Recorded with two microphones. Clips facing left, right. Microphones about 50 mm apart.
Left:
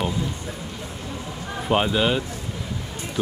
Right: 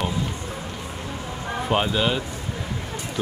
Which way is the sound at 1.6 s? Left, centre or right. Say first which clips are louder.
Left 2 dB; centre.